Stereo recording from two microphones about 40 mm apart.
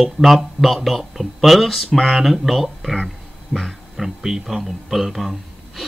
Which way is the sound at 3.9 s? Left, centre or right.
Centre.